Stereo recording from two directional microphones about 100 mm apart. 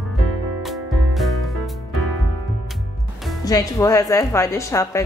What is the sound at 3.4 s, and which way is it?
Speech, 35° left (ahead or behind).